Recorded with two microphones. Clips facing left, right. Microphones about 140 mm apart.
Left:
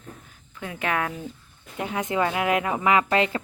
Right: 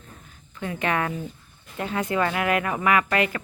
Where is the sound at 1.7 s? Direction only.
15° left (ahead or behind).